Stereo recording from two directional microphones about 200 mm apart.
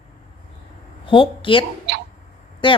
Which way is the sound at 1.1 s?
25° left (ahead or behind).